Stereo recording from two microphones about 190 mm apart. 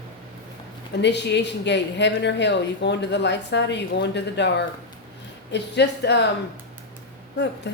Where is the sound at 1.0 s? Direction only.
65° left (ahead or behind).